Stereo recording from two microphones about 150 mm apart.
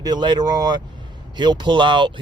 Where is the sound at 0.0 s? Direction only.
30° right (ahead or behind).